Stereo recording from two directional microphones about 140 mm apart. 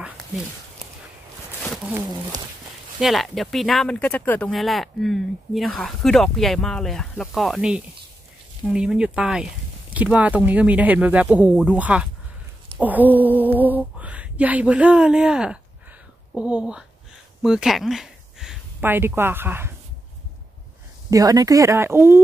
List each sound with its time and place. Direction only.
3.0 s speech: centre (ahead or behind)
4.5 s speech: centre (ahead or behind)
17.4 s a sound: 5° right (ahead or behind)
18.8 s speech: 15° right (ahead or behind)
21.1 s speech: 25° right (ahead or behind)